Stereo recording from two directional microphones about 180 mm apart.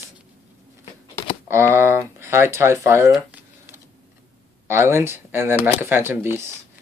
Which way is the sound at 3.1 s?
10° right (ahead or behind).